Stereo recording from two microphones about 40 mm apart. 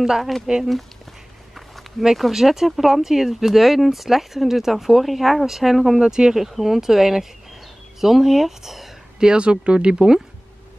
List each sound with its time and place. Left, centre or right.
0.0 s speech: centre
1.5 s speech: centre
6.0 s speech: centre
9.2 s speech: right